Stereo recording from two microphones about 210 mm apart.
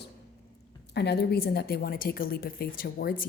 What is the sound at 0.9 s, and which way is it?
A woman's voice, 55° left (ahead or behind).